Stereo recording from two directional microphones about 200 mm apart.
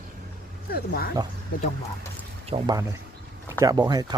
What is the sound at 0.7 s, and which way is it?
Speech, 50° left (ahead or behind).